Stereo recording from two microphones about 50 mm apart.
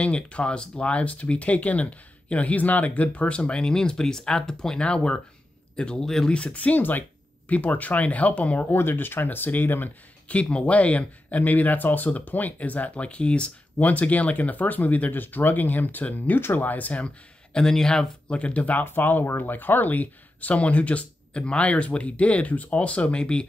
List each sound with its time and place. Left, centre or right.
0.0 s speech: left
6.3 s speech: left
8.7 s speech: left
10.2 s speech: left
18.3 s speech: left
18.9 s speech: left